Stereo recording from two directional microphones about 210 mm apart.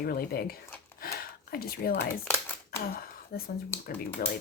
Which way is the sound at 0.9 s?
45° left (ahead or behind).